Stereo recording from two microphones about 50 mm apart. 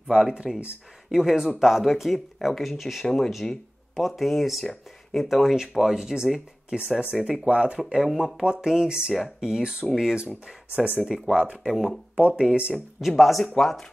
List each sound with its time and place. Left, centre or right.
0.1 s speech: centre
7.3 s speech: right
7.8 s speech: centre
12.4 s speech: centre
12.7 s speech: centre